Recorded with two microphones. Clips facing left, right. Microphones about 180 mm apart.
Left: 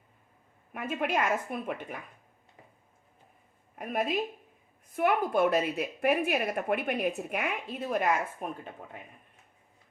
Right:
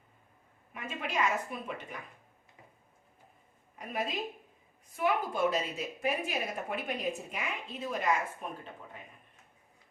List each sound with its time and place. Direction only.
0.7 s a woman's voice: 55° left (ahead or behind)
4.9 s a woman's voice: 60° left (ahead or behind)